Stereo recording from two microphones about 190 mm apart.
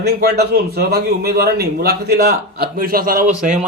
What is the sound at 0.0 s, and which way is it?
Speech, 55° right (ahead or behind).